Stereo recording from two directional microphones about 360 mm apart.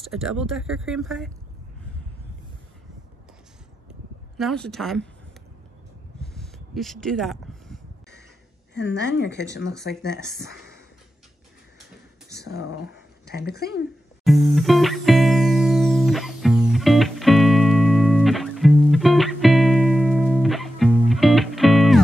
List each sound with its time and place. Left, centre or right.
0.0 s a woman's voice: centre
4.4 s a woman's voice: centre
6.3 s a sound: centre
8.7 s speech: left
12.3 s speech: left
14.2 s music: centre